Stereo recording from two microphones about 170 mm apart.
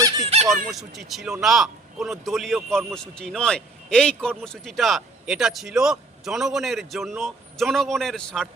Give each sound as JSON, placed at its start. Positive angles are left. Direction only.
{"t": 0.4, "sound": "speech", "side_deg": 0}